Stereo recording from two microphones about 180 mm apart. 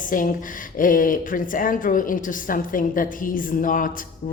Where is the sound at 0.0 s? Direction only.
50° left (ahead or behind).